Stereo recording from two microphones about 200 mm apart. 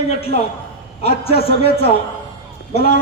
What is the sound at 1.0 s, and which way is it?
A man's voice, 30° left (ahead or behind).